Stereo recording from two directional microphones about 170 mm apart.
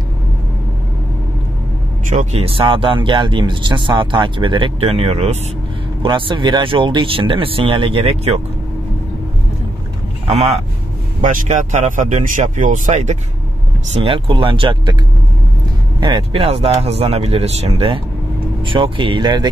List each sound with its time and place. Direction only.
2.0 s speech: 40° right (ahead or behind)
10.2 s speech: 40° right (ahead or behind)
14.0 s speech: 30° right (ahead or behind)
16.0 s speech: 25° right (ahead or behind)